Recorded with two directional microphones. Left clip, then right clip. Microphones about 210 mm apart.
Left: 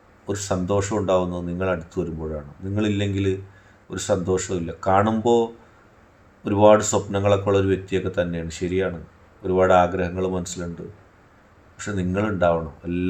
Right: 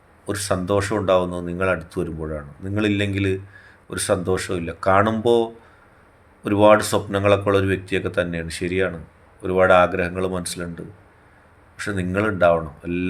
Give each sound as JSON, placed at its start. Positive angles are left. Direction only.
{"t": 0.7, "sound": "speech", "side_deg": -20}
{"t": 11.8, "sound": "speech", "side_deg": -20}